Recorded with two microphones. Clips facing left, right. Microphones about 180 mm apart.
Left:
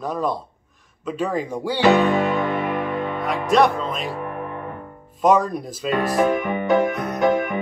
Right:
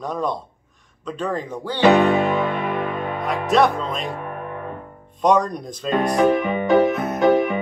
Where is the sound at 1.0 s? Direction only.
10° left (ahead or behind).